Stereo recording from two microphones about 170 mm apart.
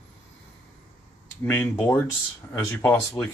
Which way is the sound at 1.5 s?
10° left (ahead or behind).